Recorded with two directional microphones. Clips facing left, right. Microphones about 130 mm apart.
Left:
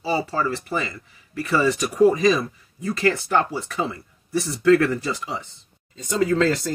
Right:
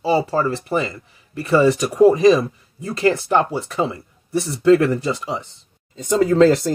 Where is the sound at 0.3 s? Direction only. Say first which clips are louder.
Right 5 dB; 25° right (ahead or behind).